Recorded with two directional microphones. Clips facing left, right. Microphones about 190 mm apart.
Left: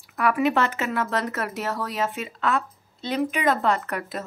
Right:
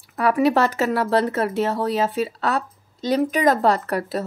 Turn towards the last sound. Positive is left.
turn(degrees=-35)  # may be behind; listen again after turning